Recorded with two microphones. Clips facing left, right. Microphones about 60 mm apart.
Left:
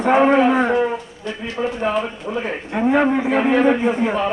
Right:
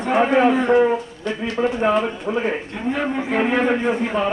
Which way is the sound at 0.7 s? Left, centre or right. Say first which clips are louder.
Right 3 dB; centre.